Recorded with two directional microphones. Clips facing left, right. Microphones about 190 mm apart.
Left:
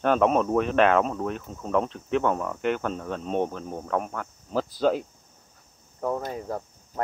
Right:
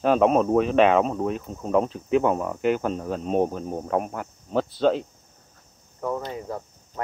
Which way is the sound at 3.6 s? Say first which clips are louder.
Right 3 dB; 20° right (ahead or behind).